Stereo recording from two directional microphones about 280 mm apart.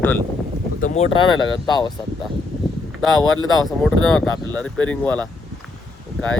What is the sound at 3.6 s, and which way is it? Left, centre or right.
Speech, centre.